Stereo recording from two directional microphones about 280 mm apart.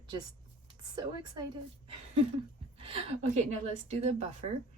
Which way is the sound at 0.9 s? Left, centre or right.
Centre.